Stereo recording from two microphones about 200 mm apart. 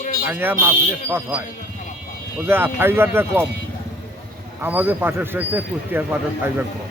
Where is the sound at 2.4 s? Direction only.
10° right (ahead or behind).